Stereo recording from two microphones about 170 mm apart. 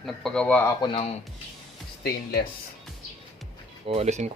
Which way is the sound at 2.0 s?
65° left (ahead or behind).